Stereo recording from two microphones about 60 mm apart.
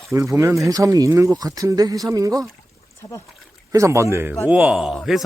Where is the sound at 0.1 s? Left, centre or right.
Right.